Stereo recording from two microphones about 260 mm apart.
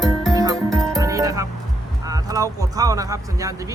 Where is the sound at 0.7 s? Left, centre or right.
Centre.